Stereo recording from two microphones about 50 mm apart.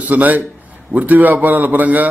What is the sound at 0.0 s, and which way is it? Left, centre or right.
A man's voice, right.